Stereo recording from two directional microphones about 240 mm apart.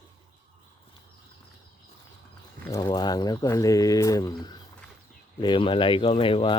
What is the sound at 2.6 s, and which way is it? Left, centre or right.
Speech, centre.